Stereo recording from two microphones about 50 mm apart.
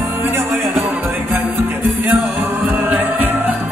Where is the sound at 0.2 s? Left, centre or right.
Right.